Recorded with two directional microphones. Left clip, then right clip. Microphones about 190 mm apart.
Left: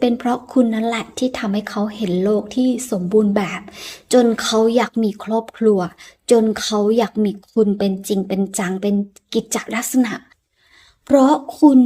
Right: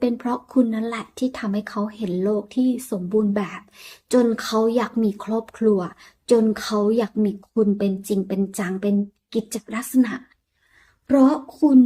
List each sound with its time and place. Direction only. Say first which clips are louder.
0.0 s speech: left 5 dB; 25° left (ahead or behind)